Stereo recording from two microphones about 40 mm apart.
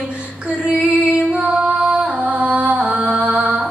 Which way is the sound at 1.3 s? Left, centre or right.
Right.